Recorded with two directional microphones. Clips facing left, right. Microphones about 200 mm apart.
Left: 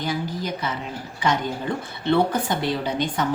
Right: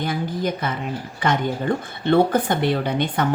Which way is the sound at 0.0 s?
55° right (ahead or behind).